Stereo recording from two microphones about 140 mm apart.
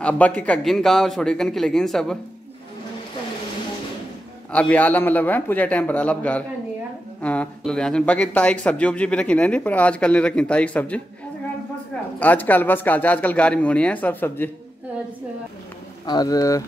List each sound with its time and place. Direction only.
0.0 s a man's voice: 10° left (ahead or behind)
4.5 s speech: 10° left (ahead or behind)
12.2 s speech: 10° left (ahead or behind)
16.1 s speech: 25° left (ahead or behind)